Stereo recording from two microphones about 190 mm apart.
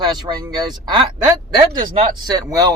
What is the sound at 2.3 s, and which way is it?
Speech, 20° right (ahead or behind).